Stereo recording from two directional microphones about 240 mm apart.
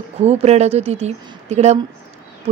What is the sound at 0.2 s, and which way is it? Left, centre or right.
A woman's voice, right.